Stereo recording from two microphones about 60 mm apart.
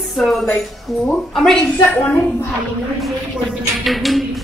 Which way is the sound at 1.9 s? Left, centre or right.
Left.